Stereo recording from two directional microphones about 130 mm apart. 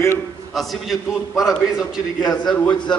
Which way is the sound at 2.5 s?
10° left (ahead or behind).